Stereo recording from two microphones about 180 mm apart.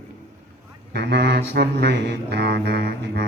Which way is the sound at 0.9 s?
70° right (ahead or behind).